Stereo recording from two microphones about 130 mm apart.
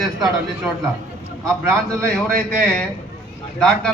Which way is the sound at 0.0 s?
Centre (ahead or behind).